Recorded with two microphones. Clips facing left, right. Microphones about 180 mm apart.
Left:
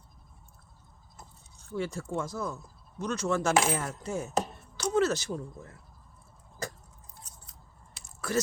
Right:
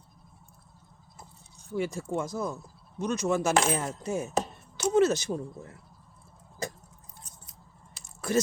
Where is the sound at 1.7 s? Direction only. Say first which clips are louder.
Right 3 dB; 10° right (ahead or behind).